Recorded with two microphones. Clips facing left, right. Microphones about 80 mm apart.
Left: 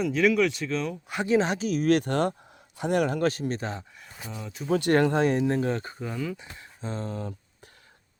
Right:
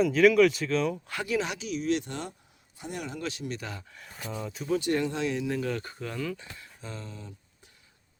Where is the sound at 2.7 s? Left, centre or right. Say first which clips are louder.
Left 12 dB; left.